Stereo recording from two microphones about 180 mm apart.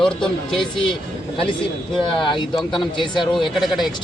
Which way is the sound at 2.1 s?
25° left (ahead or behind).